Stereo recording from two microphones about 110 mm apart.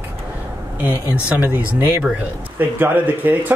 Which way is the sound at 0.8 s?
15° right (ahead or behind).